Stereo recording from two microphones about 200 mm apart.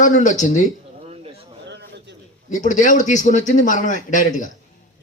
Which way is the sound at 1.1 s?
30° right (ahead or behind).